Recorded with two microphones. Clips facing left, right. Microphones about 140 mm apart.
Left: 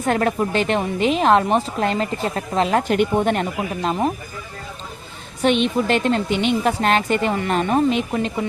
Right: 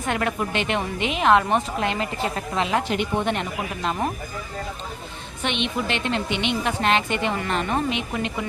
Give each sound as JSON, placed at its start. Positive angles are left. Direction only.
{"t": 0.0, "sound": "a woman's voice", "side_deg": 40}
{"t": 5.4, "sound": "a woman's voice", "side_deg": 40}